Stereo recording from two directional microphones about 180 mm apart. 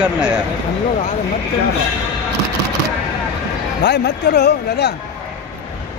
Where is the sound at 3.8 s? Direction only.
70° left (ahead or behind).